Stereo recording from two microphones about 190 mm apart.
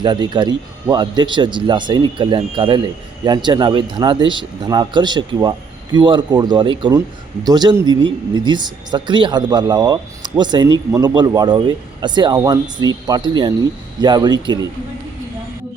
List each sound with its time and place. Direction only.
0.0 s speech: 25° right (ahead or behind)